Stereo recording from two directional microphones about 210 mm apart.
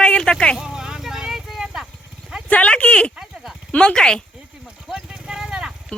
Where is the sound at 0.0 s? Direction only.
5° left (ahead or behind).